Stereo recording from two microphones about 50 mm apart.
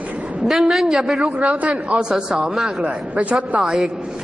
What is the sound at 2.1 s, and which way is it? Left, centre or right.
Speech, centre.